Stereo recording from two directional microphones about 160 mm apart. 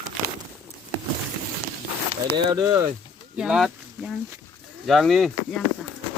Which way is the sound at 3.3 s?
5° right (ahead or behind).